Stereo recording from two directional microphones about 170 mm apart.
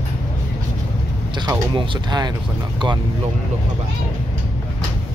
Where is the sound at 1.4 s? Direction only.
25° right (ahead or behind).